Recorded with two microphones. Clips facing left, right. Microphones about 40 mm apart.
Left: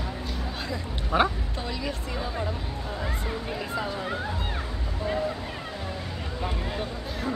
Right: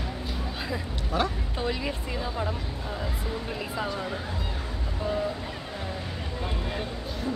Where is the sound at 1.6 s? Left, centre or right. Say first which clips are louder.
Right 4 dB; centre.